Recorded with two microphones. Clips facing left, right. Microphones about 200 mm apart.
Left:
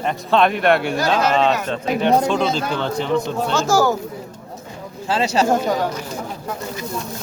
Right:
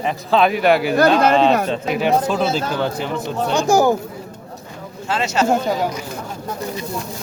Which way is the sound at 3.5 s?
15° right (ahead or behind).